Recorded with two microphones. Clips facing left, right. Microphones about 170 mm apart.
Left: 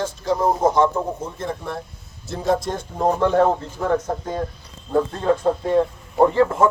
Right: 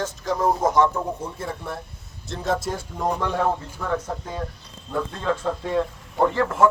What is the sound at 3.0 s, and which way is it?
Speech, 40° left (ahead or behind).